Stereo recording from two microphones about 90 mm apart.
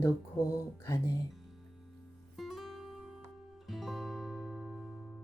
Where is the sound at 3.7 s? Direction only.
Centre (ahead or behind).